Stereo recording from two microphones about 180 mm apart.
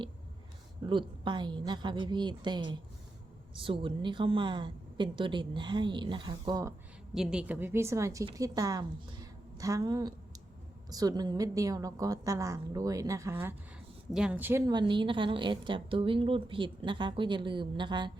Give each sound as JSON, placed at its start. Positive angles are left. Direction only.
{"t": 0.9, "sound": "a woman's voice", "side_deg": -25}
{"t": 7.1, "sound": "a woman's voice", "side_deg": -5}
{"t": 14.7, "sound": "a woman's voice", "side_deg": -25}